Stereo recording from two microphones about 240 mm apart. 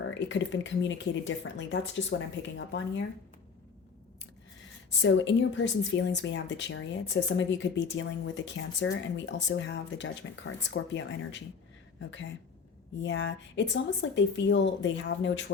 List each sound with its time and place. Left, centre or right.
0.1 s speech: left
4.9 s speech: left